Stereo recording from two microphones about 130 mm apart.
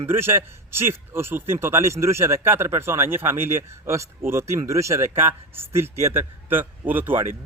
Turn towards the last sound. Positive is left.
turn(degrees=-15)  # may be behind; listen again after turning